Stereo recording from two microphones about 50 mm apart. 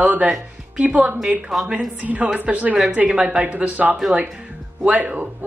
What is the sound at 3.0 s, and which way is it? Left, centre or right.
A woman's voice, centre.